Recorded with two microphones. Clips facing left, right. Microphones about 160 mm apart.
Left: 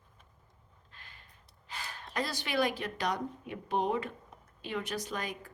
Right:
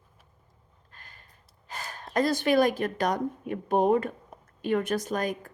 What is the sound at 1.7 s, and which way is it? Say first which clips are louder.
Speech: right 4 dB; 45° right (ahead or behind).